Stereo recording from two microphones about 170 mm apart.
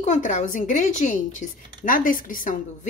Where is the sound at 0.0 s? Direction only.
45° left (ahead or behind).